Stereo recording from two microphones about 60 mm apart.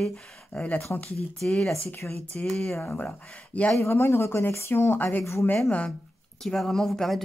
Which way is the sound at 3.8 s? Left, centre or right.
Left.